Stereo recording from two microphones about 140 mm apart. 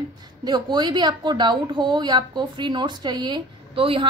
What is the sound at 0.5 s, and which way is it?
A woman's voice, 30° right (ahead or behind).